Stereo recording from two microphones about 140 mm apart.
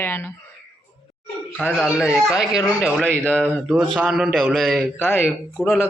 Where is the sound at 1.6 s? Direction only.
5° right (ahead or behind).